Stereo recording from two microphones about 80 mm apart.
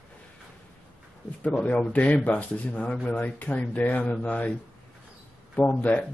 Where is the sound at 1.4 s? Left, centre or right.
Centre.